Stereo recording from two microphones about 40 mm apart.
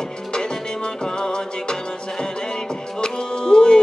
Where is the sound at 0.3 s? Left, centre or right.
Centre.